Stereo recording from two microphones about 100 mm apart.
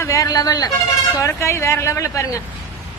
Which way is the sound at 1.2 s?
30° left (ahead or behind).